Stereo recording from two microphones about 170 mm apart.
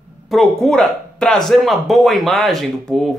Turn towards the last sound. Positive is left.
turn(degrees=0)  # may be behind; listen again after turning